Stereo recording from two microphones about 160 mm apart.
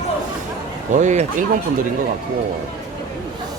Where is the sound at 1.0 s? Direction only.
45° right (ahead or behind).